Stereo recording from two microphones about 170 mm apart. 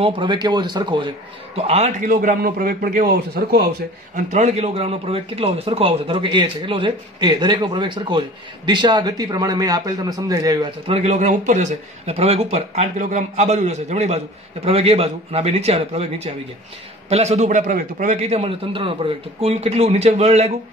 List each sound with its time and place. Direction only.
0.0 s a man's voice: 30° right (ahead or behind)
1.6 s a man's voice: 40° right (ahead or behind)
2.0 s a man's voice: 55° right (ahead or behind)
4.1 s a man's voice: 45° right (ahead or behind); by 10.7 s 20° right (ahead or behind)
10.9 s a man's voice: 40° right (ahead or behind)